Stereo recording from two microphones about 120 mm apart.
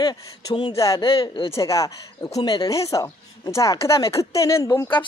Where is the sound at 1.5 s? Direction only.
25° left (ahead or behind).